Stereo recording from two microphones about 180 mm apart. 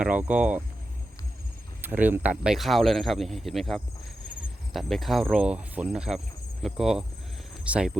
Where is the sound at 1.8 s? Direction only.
10° right (ahead or behind).